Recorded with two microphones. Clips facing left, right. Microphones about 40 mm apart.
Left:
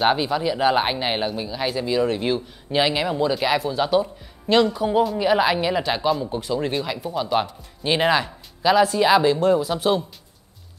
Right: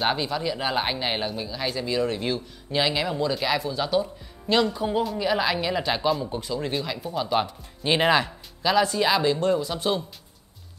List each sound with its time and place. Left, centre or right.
0.1 s speech: centre
5.9 s speech: centre